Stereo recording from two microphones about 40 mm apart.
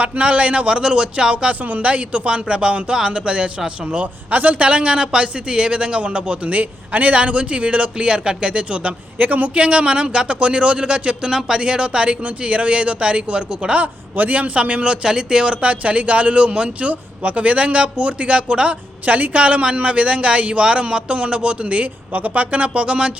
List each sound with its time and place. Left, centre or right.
0.0 s speech: right
1.6 s speech: right
3.8 s speech: right
6.5 s a man's voice: right
9.1 s speech: right
9.6 s speech: right
11.3 s speech: centre
13.8 s a man's voice: right
15.0 s speech: centre
15.6 s a man's voice: right